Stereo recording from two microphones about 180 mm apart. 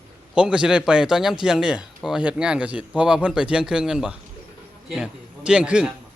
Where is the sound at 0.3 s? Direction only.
5° right (ahead or behind).